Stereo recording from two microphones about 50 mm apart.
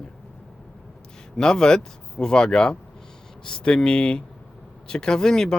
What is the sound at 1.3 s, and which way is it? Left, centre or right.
Speech, centre.